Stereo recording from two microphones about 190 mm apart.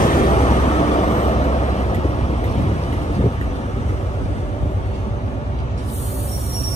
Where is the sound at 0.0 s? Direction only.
45° left (ahead or behind).